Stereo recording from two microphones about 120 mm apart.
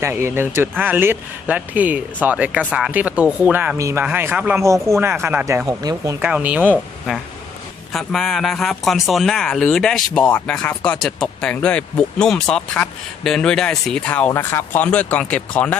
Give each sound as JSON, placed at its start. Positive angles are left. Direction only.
{"t": 0.0, "sound": "speech", "side_deg": -20}
{"t": 3.8, "sound": "speech", "side_deg": -25}
{"t": 5.6, "sound": "speech", "side_deg": -30}
{"t": 6.2, "sound": "speech", "side_deg": -10}
{"t": 7.9, "sound": "speech", "side_deg": 0}